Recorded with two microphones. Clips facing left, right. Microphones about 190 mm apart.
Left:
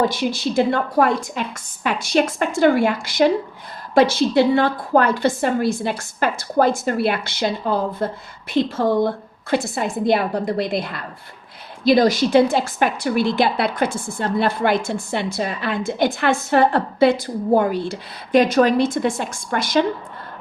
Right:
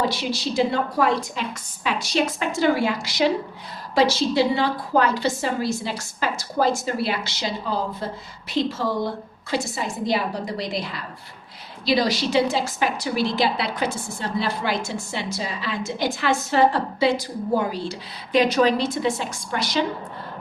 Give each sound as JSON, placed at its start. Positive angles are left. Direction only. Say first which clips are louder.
{"t": 0.0, "sound": "a woman's voice", "louder": "left 4 dB", "side_deg": 50}